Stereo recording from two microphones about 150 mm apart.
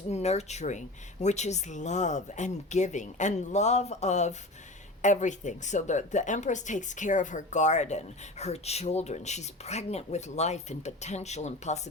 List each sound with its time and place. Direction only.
0.1 s a woman's voice: 45° left (ahead or behind)